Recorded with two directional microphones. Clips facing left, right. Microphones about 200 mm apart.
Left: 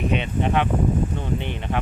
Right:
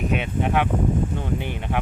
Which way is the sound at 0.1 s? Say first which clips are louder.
Even; 5° right (ahead or behind).